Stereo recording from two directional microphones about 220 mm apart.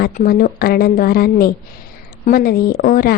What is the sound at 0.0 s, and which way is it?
A woman's voice, 40° left (ahead or behind).